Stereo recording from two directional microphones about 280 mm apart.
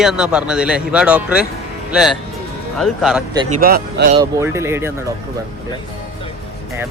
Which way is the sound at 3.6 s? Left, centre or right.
Right.